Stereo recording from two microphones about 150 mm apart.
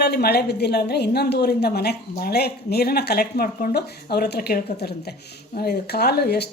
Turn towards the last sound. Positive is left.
turn(degrees=90)